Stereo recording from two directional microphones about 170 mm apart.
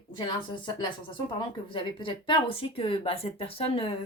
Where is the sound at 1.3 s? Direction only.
30° left (ahead or behind).